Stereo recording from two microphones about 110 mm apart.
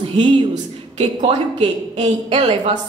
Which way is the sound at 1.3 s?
70° right (ahead or behind).